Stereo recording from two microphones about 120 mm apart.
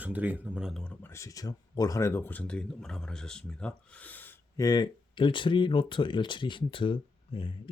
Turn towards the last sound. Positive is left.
turn(degrees=45)  # may be behind; listen again after turning